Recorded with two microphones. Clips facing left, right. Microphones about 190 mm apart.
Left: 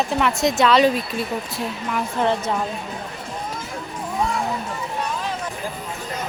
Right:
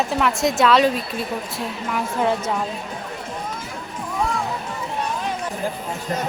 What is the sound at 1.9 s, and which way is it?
Speech, 5° right (ahead or behind).